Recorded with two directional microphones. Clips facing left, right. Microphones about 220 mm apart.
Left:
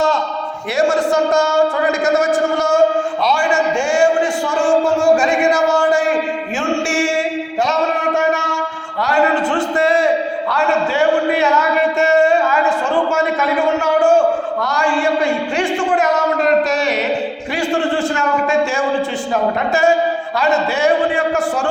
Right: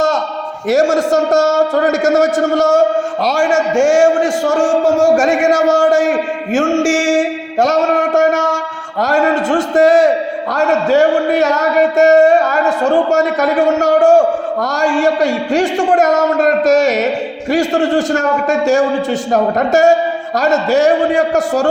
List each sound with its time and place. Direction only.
0.7 s a man's voice: 45° right (ahead or behind)
6.8 s a sound: 45° right (ahead or behind)
10.5 s a man's voice: 40° right (ahead or behind)